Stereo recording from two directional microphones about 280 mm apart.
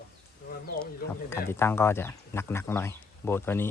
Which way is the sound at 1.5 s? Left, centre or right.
Centre.